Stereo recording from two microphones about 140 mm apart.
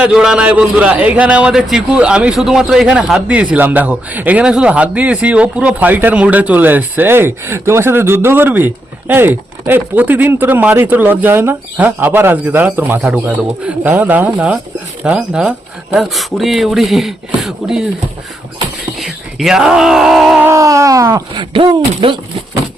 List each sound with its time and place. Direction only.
0.0 s a man's voice: 5° right (ahead or behind)
18.9 s speech: centre (ahead or behind)
20.4 s speech: 20° right (ahead or behind); by 22.2 s 40° right (ahead or behind)